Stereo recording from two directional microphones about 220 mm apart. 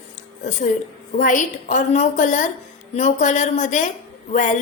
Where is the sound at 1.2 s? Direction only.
35° left (ahead or behind).